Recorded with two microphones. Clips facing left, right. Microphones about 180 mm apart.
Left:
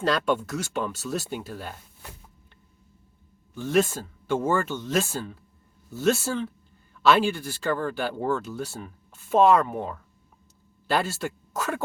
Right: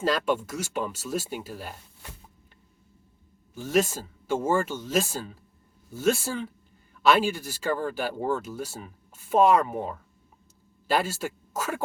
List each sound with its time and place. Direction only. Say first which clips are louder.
0.3 s speech: left 1 dB; 10° right (ahead or behind)
3.5 s speech: left 2 dB; 10° right (ahead or behind)